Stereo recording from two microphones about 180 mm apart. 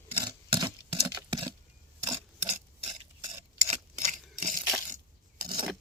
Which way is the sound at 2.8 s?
30° right (ahead or behind).